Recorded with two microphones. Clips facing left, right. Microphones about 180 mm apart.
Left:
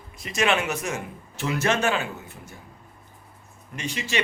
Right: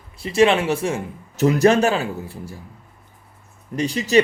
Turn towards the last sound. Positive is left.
turn(degrees=-40)  # may be behind; listen again after turning